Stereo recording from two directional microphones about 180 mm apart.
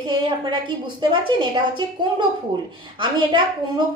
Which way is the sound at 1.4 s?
25° right (ahead or behind).